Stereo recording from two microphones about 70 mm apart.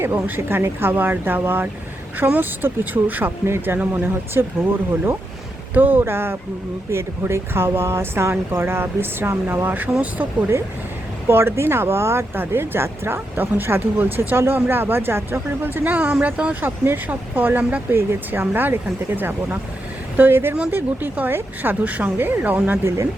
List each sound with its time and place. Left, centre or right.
0.0 s speech: right
11.3 s speech: right
17.9 s speech: right